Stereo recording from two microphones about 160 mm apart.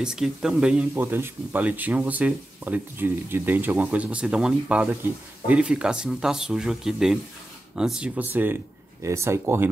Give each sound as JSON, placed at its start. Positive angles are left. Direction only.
{"t": 0.0, "sound": "speech", "side_deg": -5}